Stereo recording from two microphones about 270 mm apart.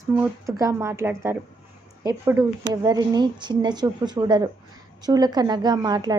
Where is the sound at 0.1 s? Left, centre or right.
Centre.